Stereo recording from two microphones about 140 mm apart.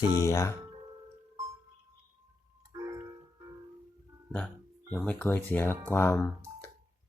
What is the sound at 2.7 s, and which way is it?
Music, 25° right (ahead or behind).